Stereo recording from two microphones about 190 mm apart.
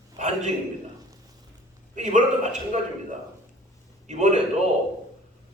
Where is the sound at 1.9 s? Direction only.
40° right (ahead or behind).